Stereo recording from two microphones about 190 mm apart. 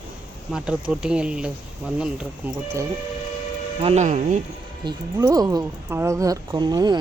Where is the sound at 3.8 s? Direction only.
35° right (ahead or behind).